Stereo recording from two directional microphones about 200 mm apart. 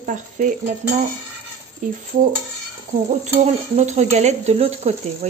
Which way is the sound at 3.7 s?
35° right (ahead or behind).